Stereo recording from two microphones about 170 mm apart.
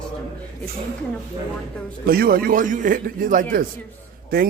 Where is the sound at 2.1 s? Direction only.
60° right (ahead or behind).